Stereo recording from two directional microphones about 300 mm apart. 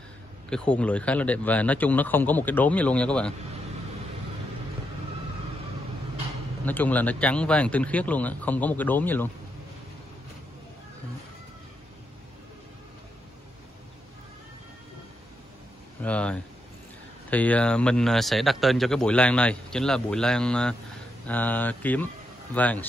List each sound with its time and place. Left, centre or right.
0.5 s speech: centre
6.6 s speech: centre
16.0 s speech: centre